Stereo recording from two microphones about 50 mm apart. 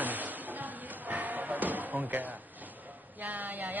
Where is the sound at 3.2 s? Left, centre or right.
Right.